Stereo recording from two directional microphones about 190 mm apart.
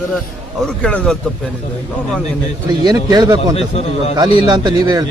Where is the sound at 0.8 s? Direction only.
5° left (ahead or behind).